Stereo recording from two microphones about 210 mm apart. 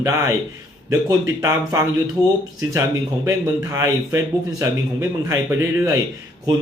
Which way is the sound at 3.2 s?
15° right (ahead or behind).